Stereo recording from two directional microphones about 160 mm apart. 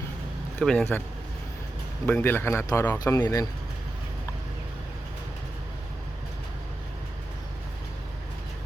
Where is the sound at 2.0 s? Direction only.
10° left (ahead or behind).